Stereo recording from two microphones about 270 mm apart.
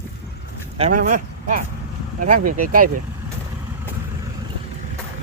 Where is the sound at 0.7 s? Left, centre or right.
Right.